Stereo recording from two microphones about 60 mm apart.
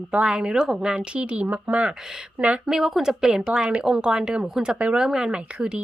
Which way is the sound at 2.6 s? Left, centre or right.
Centre.